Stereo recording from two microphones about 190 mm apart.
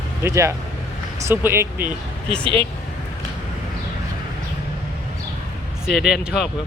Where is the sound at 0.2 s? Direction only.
15° right (ahead or behind).